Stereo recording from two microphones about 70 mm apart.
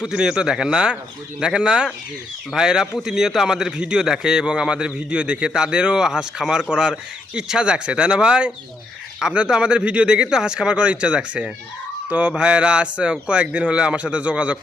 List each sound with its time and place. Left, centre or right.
0.0 s a man's voice: centre